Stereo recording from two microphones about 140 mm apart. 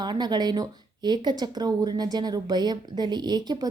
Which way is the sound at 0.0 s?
30° right (ahead or behind).